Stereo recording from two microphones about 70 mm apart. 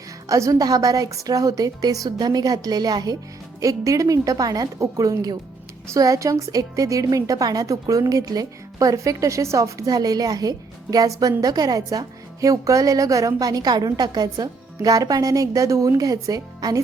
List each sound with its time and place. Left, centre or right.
0.3 s a woman's voice: right
0.6 s a woman's voice: right
3.6 s a woman's voice: right
9.9 s a woman's voice: right